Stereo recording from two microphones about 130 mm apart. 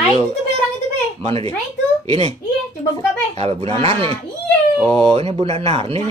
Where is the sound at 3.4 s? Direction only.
50° right (ahead or behind).